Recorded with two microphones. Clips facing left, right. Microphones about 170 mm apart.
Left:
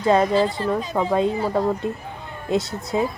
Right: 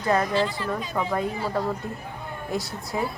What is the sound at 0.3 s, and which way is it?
Speech, 40° left (ahead or behind).